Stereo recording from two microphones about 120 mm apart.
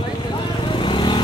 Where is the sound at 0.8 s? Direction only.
40° left (ahead or behind).